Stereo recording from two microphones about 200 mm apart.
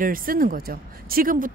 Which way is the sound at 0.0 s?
45° right (ahead or behind).